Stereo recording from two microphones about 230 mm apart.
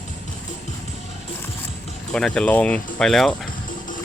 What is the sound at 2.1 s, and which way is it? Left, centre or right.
Speech, centre.